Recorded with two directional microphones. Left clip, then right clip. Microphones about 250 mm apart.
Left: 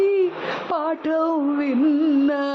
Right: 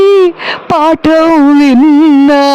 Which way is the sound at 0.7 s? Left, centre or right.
Right.